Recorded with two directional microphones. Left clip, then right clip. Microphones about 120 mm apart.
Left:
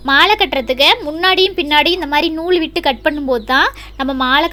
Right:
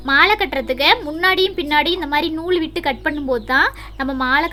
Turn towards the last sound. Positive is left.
turn(degrees=20)  # may be behind; listen again after turning